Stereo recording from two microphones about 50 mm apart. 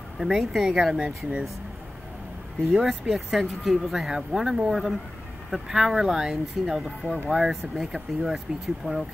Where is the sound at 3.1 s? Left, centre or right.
Centre.